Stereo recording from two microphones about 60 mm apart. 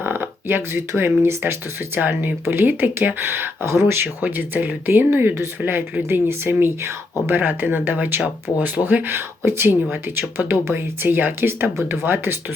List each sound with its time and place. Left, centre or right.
0.0 s speech: right
2.0 s speech: right
4.2 s speech: right